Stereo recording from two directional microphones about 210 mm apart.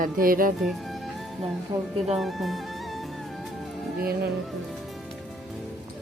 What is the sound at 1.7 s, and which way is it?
Speech, 20° right (ahead or behind).